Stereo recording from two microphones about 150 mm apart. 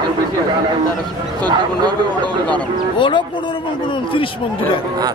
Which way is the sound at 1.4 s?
30° right (ahead or behind).